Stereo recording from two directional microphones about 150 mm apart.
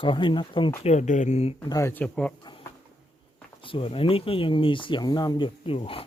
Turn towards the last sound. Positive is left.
turn(degrees=40)  # may be behind; listen again after turning